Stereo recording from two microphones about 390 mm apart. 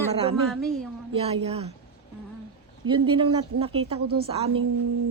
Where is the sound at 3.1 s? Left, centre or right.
Centre.